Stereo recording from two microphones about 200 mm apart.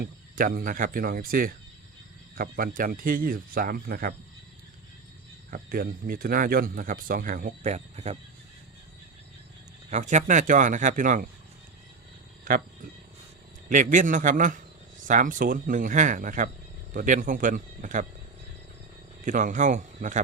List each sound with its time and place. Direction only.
0.0 s speech: 45° right (ahead or behind)
5.5 s speech: 45° right (ahead or behind)
9.9 s a man's voice: 35° right (ahead or behind)
12.5 s speech: 45° right (ahead or behind)
13.7 s a man's voice: 40° right (ahead or behind)
19.2 s a man's voice: 40° right (ahead or behind)